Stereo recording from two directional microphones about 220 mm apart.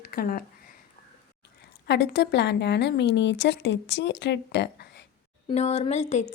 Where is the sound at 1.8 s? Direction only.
50° left (ahead or behind).